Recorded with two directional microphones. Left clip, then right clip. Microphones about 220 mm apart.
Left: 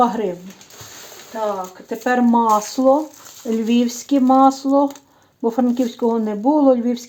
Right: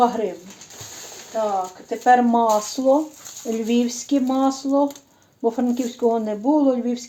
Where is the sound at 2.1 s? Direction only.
35° left (ahead or behind).